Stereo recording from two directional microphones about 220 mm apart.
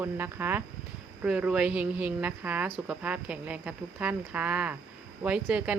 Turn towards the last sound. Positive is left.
turn(degrees=-5)  # may be behind; listen again after turning